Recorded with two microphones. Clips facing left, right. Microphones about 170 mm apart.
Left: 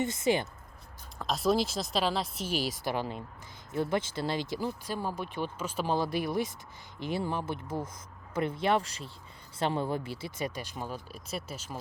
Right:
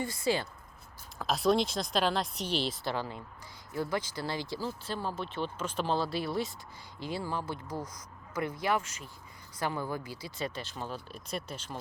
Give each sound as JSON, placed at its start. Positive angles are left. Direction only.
{"t": 0.0, "sound": "speech", "side_deg": 20}
{"t": 1.2, "sound": "speech", "side_deg": 0}